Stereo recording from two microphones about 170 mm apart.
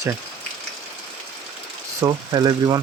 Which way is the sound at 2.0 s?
25° right (ahead or behind).